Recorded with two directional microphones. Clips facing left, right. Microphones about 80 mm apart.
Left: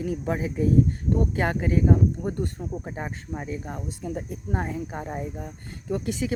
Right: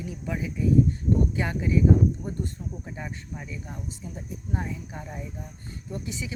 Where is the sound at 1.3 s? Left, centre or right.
Left.